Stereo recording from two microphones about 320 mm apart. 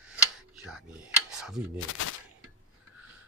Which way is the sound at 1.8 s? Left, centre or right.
Left.